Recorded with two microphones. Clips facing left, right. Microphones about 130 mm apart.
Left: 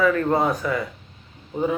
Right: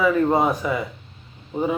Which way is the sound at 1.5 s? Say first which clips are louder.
Even; 30° right (ahead or behind).